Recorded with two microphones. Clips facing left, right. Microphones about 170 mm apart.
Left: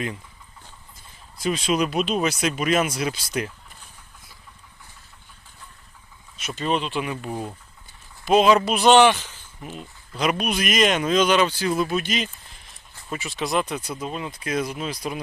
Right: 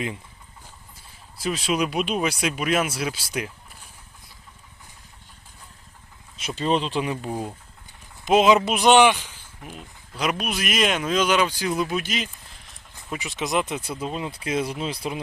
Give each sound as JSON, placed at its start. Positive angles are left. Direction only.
{"t": 1.4, "sound": "speech", "side_deg": -5}
{"t": 6.3, "sound": "speech", "side_deg": -30}
{"t": 7.3, "sound": "a man's voice", "side_deg": -15}